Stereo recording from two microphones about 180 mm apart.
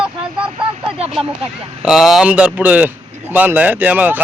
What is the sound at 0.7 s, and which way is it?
Speech, 35° right (ahead or behind).